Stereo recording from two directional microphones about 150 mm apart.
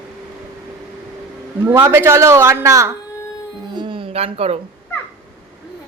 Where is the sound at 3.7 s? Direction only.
35° right (ahead or behind).